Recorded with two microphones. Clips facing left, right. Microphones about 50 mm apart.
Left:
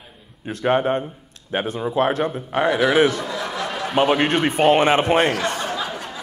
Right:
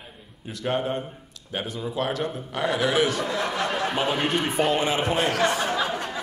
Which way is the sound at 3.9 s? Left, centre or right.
Left.